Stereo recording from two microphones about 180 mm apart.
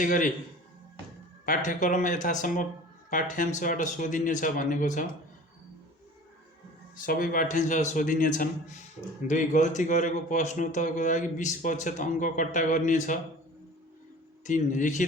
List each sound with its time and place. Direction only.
0.0 s speech: 45° left (ahead or behind)
1.5 s speech: 45° left (ahead or behind)
6.9 s speech: 50° left (ahead or behind)
14.4 s speech: 45° left (ahead or behind)